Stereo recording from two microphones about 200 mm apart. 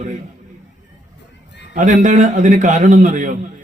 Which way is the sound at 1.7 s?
40° right (ahead or behind).